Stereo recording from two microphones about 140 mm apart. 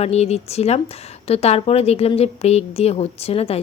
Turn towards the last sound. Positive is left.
turn(degrees=45)  # may be behind; listen again after turning